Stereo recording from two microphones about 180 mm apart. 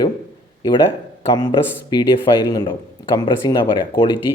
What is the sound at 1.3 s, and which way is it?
Speech, 25° left (ahead or behind).